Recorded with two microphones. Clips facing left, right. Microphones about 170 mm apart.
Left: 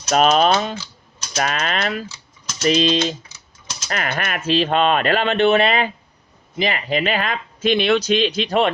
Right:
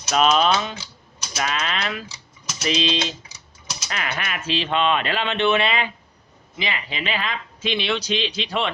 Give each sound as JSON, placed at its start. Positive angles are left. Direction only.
{"t": 0.1, "sound": "speech", "side_deg": 45}